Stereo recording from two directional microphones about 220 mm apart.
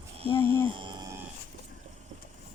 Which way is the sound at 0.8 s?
20° right (ahead or behind).